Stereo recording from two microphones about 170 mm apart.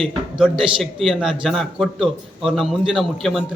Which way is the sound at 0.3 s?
Centre (ahead or behind).